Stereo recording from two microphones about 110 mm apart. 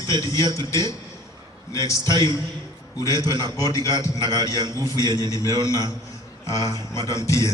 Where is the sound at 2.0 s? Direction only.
40° right (ahead or behind).